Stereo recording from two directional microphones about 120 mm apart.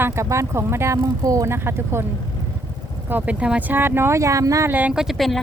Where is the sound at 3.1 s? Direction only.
15° right (ahead or behind).